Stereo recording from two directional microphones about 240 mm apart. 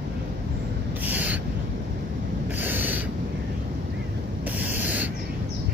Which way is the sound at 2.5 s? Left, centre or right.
Centre.